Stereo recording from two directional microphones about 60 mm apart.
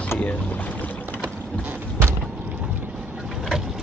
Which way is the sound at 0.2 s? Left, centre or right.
Left.